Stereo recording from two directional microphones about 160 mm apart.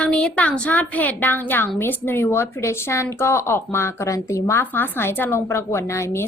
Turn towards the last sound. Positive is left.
turn(degrees=15)  # may be behind; listen again after turning